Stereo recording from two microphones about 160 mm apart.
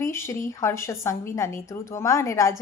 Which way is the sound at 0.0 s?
15° left (ahead or behind).